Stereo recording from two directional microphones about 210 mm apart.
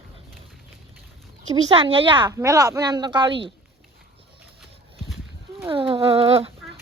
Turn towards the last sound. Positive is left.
turn(degrees=-25)  # may be behind; listen again after turning